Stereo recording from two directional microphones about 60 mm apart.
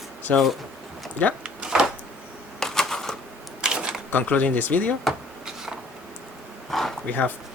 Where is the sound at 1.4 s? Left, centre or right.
Centre.